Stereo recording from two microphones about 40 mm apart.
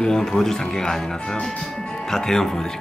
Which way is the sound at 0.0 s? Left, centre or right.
Centre.